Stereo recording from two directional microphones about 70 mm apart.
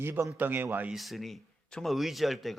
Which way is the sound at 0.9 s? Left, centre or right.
Centre.